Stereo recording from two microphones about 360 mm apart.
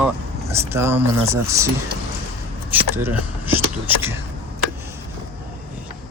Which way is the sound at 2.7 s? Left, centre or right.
Centre.